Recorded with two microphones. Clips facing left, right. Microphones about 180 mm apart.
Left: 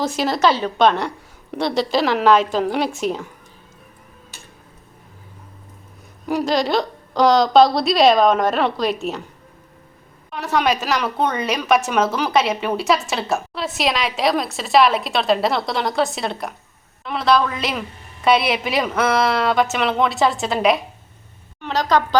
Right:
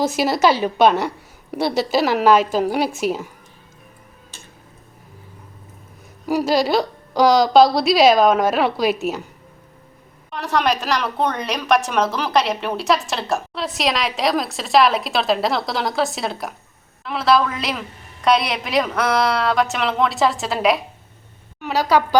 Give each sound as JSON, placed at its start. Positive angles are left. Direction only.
{"t": 0.0, "sound": "a woman's voice", "side_deg": -10}
{"t": 6.2, "sound": "a woman's voice", "side_deg": -5}
{"t": 10.3, "sound": "a woman's voice", "side_deg": 0}